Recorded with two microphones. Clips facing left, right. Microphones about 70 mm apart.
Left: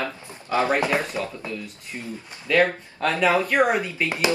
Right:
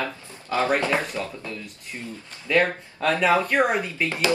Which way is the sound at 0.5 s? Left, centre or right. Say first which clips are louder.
Left 1 dB; left.